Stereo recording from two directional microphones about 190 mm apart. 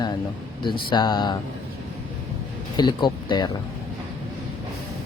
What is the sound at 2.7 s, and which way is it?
Speech, 25° left (ahead or behind).